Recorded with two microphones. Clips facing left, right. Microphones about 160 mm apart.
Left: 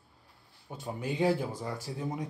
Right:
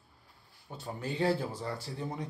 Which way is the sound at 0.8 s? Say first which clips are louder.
Left 2 dB; 15° left (ahead or behind).